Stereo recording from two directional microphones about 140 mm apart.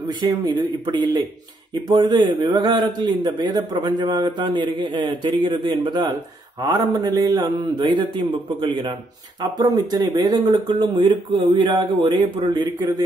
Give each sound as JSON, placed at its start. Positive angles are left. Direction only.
{"t": 0.2, "sound": "a man's voice", "side_deg": -30}